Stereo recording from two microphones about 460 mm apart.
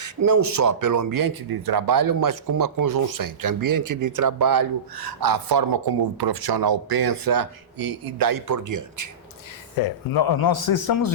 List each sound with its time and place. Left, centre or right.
0.0 s speech: right
9.8 s speech: left